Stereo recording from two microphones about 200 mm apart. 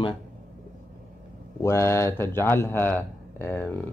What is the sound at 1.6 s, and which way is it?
Speech, 15° left (ahead or behind).